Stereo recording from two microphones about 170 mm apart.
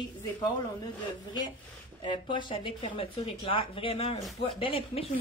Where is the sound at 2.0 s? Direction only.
30° left (ahead or behind).